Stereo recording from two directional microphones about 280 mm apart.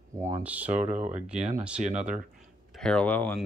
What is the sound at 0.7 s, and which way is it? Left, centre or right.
Speech, right.